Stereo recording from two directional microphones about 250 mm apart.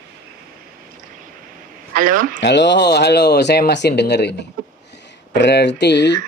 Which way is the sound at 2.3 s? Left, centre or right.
Left.